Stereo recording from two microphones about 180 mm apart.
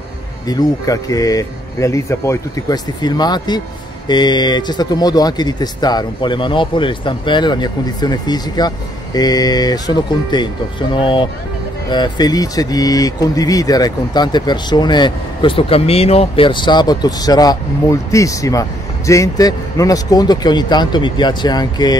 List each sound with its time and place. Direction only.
0.5 s speech: 20° left (ahead or behind)